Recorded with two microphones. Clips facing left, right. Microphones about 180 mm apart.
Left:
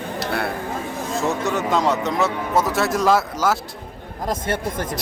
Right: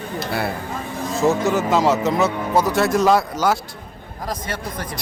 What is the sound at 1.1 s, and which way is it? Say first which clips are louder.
Speech: right 5 dB; centre (ahead or behind).